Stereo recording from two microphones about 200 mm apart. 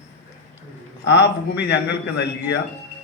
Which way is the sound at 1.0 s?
60° left (ahead or behind).